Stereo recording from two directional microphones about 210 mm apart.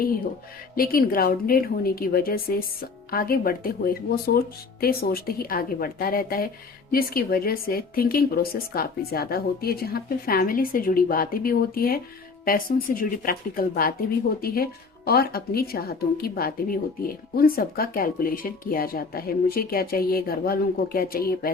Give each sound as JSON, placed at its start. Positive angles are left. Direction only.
{"t": 0.8, "sound": "speech", "side_deg": 45}